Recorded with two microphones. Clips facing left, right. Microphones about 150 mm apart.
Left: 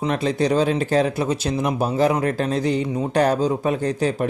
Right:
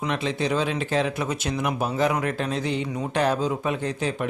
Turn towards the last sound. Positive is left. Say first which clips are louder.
# left 5 dB
turn(degrees=40)  # may be behind; listen again after turning